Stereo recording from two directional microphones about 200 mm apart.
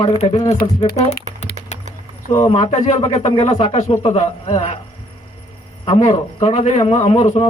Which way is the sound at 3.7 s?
35° left (ahead or behind).